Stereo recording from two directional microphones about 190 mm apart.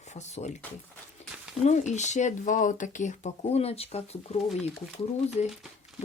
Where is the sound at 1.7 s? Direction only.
40° left (ahead or behind).